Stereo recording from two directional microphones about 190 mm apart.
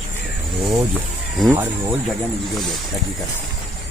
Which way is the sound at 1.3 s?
Centre (ahead or behind).